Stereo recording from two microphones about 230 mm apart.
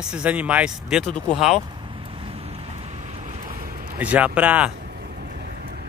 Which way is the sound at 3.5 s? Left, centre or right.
Right.